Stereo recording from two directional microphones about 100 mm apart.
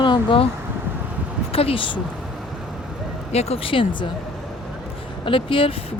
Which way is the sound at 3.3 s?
75° left (ahead or behind).